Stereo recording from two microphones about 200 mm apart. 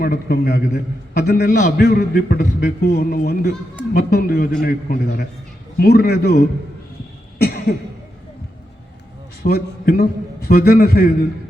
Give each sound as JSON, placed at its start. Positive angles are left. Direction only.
{"t": 0.0, "sound": "a man's voice", "side_deg": 50}
{"t": 7.4, "sound": "a sound", "side_deg": 50}
{"t": 9.4, "sound": "a man's voice", "side_deg": 50}